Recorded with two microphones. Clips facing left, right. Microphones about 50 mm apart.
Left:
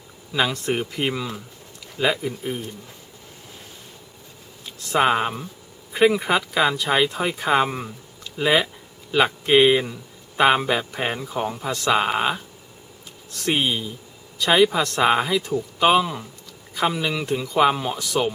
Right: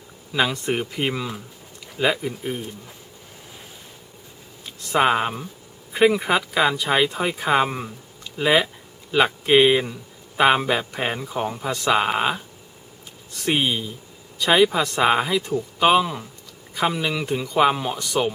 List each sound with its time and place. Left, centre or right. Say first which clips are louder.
0.3 s speech: even; centre
4.6 s speech: even; centre